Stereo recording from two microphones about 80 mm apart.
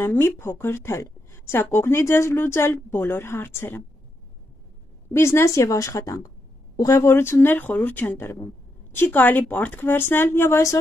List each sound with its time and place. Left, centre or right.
0.0 s speech: left
5.1 s speech: left